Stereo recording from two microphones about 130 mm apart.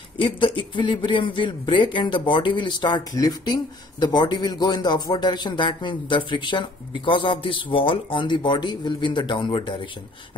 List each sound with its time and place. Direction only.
0.2 s speech: 40° left (ahead or behind)